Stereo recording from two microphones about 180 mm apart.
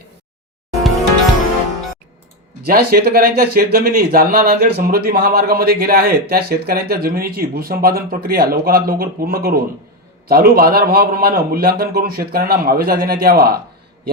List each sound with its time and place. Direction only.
0.7 s music: centre (ahead or behind)
2.6 s speech: 55° right (ahead or behind)